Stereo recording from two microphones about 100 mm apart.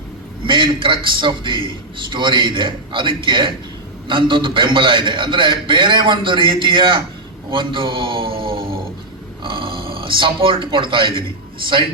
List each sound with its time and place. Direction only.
0.4 s a man's voice: 55° right (ahead or behind)